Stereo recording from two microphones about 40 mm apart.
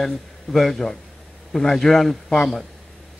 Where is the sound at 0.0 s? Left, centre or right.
Centre.